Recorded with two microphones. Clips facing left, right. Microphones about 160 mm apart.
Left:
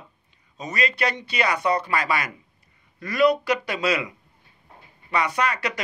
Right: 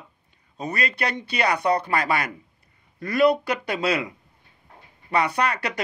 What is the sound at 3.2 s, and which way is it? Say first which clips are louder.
Speech: even; 55° right (ahead or behind).